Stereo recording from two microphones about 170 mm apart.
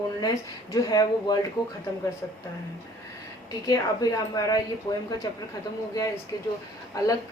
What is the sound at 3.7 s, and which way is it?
Speech, 20° left (ahead or behind).